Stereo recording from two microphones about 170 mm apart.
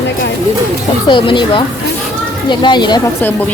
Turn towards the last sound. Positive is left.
turn(degrees=25)  # may be behind; listen again after turning